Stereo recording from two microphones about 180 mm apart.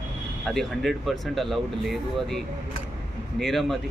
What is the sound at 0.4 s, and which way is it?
Speech, centre (ahead or behind).